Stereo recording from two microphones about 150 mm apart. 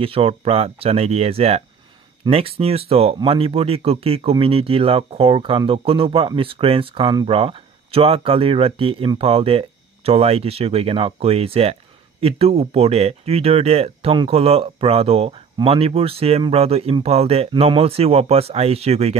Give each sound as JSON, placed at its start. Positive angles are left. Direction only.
{"t": 0.0, "sound": "speech", "side_deg": -40}